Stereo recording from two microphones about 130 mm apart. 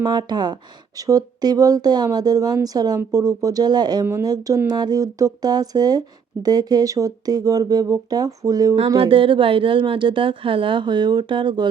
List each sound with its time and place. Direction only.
0.0 s speech: 35° right (ahead or behind)
4.0 s speech: 20° right (ahead or behind)
9.0 s speech: 40° right (ahead or behind)